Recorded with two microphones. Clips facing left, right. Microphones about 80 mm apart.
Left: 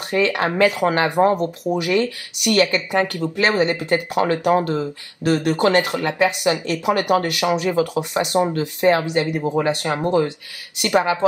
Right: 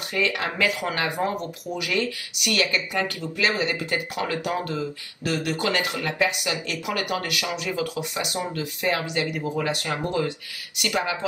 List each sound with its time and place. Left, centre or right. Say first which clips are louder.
0.1 s speech: left 7 dB; left